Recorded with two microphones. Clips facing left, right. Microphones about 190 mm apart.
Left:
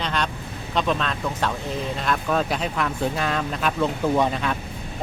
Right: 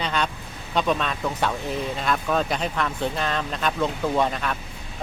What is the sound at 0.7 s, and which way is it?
Speech, 5° right (ahead or behind).